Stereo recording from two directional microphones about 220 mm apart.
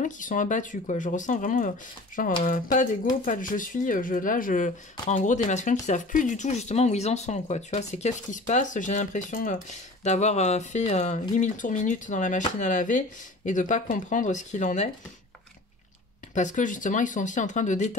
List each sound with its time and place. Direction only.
0.0 s speech: 35° left (ahead or behind)
16.3 s speech: 35° left (ahead or behind)